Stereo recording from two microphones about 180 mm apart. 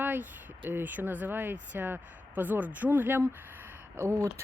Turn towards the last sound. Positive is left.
turn(degrees=-15)  # may be behind; listen again after turning